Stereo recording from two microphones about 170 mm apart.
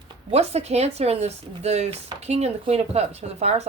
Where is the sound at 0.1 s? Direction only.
40° right (ahead or behind).